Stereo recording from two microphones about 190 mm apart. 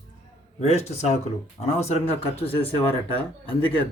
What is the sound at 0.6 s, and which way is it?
Speech, 35° left (ahead or behind).